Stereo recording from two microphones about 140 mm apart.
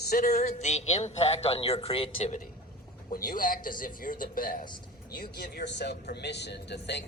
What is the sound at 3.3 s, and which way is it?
Speech, 85° left.